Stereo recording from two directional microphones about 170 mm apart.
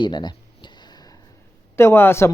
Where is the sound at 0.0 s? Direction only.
25° left (ahead or behind).